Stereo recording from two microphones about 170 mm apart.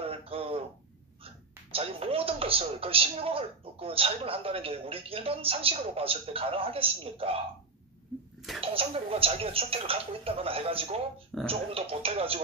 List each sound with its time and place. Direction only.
0.0 s a sound: 35° right (ahead or behind)
1.2 s a man's voice: 35° right (ahead or behind)
8.5 s a man's voice: 35° right (ahead or behind)